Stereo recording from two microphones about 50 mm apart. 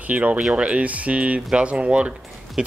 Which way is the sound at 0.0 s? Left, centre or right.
Right.